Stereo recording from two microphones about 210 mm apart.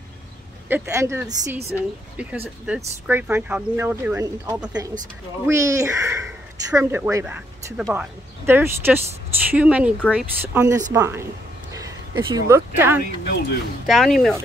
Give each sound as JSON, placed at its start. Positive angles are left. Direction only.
{"t": 0.7, "sound": "speech", "side_deg": -10}
{"t": 13.2, "sound": "speech", "side_deg": 50}
{"t": 13.8, "sound": "speech", "side_deg": 0}